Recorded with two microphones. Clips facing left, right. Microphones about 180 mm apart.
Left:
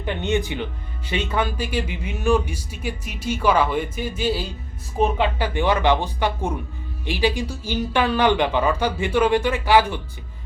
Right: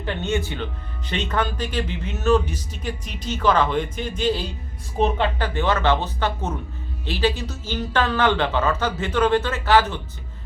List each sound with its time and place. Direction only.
0.0 s speech: 15° left (ahead or behind)